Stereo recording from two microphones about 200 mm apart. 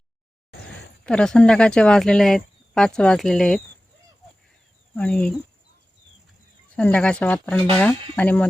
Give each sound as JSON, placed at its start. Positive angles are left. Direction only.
{"t": 1.0, "sound": "speech", "side_deg": 5}
{"t": 4.9, "sound": "speech", "side_deg": 5}
{"t": 6.7, "sound": "speech", "side_deg": 5}